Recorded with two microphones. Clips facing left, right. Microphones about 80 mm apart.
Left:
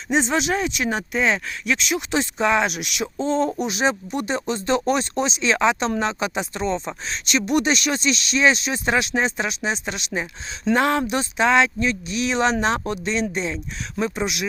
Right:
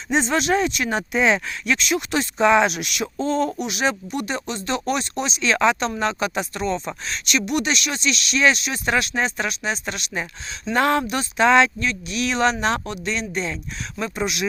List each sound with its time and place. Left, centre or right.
0.1 s speech: centre
0.9 s speech: centre
1.6 s speech: centre
2.4 s speech: centre
2.9 s speech: centre
5.4 s speech: centre; by 8.4 s left
8.4 s speech: centre
10.8 s speech: centre
11.0 s speech: centre
11.3 s speech: centre
11.8 s speech: left